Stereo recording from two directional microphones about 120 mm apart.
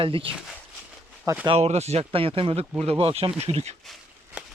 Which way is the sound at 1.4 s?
55° right (ahead or behind).